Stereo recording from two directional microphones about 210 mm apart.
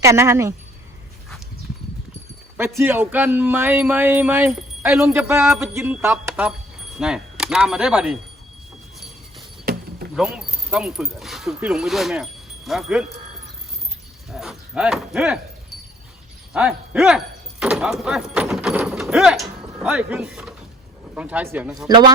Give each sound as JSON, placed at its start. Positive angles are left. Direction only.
{"t": 0.0, "sound": "speech", "side_deg": -15}
{"t": 2.6, "sound": "speech", "side_deg": -10}
{"t": 9.7, "sound": "keys jangling", "side_deg": -45}
{"t": 10.2, "sound": "speech", "side_deg": -5}
{"t": 14.3, "sound": "speech", "side_deg": 0}
{"t": 16.5, "sound": "speech", "side_deg": -5}
{"t": 21.8, "sound": "a man's voice", "side_deg": -20}